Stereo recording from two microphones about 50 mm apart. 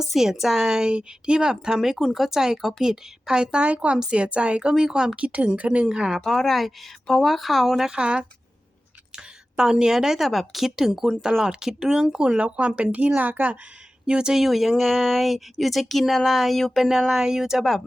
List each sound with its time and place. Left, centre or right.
0.0 s a woman's voice: centre
5.1 s speech: right
6.2 s speech: centre
7.9 s a woman's voice: centre; by 13.6 s right
14.1 s a woman's voice: centre
14.3 s a woman's voice: centre
17.6 s speech: centre